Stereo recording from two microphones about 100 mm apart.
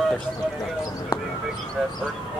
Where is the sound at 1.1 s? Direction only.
55° left (ahead or behind).